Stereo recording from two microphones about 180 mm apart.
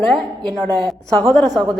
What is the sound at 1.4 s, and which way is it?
Speech, 25° right (ahead or behind).